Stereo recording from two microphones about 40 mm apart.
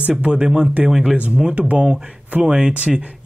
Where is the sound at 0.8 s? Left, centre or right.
Centre.